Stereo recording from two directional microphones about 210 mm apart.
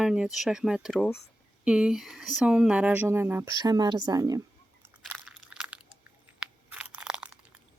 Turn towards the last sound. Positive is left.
turn(degrees=-5)  # may be behind; listen again after turning